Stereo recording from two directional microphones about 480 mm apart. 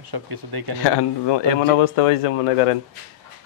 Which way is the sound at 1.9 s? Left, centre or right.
Left.